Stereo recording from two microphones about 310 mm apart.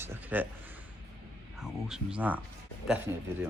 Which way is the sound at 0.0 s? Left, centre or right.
Centre.